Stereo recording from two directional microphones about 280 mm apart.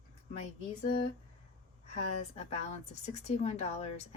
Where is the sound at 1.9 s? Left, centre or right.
Left.